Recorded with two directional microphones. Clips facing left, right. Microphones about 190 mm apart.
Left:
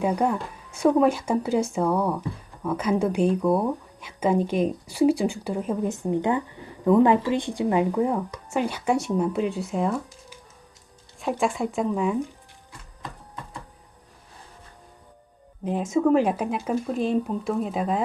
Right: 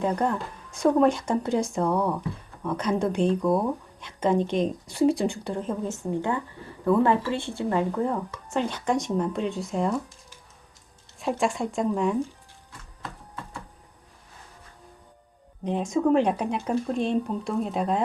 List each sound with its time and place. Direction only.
0.0 s speech: 10° left (ahead or behind)
13.0 s a sound: 15° left (ahead or behind)
15.6 s speech: 5° left (ahead or behind)